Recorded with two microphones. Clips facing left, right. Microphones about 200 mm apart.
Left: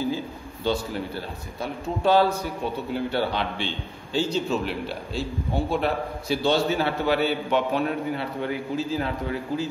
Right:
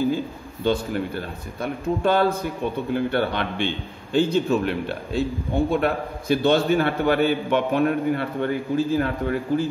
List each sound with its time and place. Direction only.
0.7 s a man's voice: 55° right (ahead or behind)